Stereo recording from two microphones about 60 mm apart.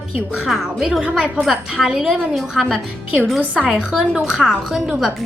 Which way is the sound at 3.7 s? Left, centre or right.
Centre.